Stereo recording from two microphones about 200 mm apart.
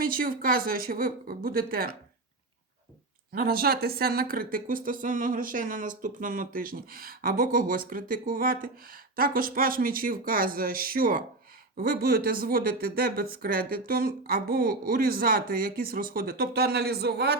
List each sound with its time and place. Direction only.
0.0 s speech: 45° right (ahead or behind)
3.3 s speech: 50° right (ahead or behind)